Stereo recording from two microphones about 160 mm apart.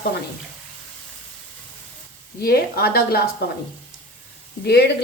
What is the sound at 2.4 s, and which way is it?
Speech, 75° left (ahead or behind).